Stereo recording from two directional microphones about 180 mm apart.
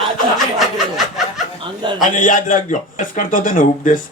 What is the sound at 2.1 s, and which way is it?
A man's voice, 50° left (ahead or behind).